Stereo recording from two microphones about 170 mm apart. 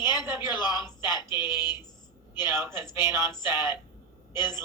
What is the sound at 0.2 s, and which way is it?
Speech, 15° right (ahead or behind).